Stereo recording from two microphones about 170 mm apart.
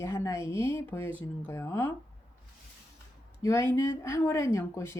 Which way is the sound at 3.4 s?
15° left (ahead or behind).